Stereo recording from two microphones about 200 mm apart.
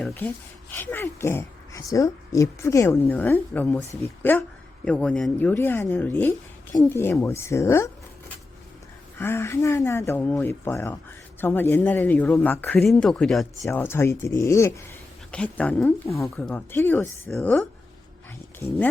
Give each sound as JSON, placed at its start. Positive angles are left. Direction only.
{"t": 0.0, "sound": "speech", "side_deg": 10}
{"t": 9.1, "sound": "speech", "side_deg": 10}
{"t": 13.7, "sound": "speech", "side_deg": 10}